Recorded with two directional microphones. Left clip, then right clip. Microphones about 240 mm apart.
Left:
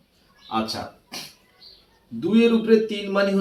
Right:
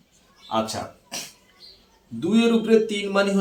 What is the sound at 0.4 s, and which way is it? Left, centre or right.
Speech, right.